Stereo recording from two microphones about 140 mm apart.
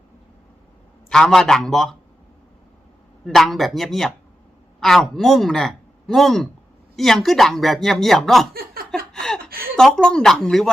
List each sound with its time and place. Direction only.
1.1 s speech: 5° left (ahead or behind)
3.2 s speech: centre (ahead or behind)
8.5 s chuckle: 90° right
9.7 s speech: 5° left (ahead or behind)